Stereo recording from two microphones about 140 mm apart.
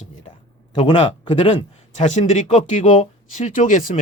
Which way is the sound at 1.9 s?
55° left (ahead or behind).